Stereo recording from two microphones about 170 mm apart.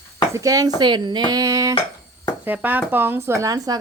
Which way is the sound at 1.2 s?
20° right (ahead or behind).